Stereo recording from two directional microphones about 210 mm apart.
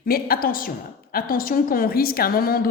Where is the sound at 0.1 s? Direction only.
45° left (ahead or behind).